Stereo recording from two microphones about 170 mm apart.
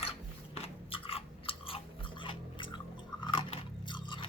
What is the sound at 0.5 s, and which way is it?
Chewing, 35° left (ahead or behind).